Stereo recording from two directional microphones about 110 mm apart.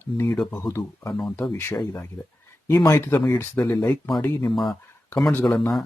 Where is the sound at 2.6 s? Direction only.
25° left (ahead or behind).